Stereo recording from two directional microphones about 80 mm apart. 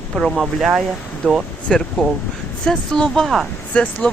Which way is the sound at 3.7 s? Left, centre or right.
Centre.